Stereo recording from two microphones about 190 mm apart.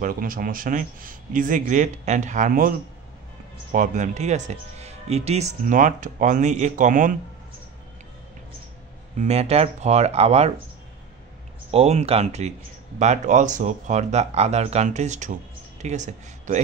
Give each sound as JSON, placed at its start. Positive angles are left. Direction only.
{"t": 0.0, "sound": "speech", "side_deg": -45}
{"t": 3.7, "sound": "speech", "side_deg": -40}
{"t": 9.2, "sound": "speech", "side_deg": -35}
{"t": 11.7, "sound": "speech", "side_deg": -35}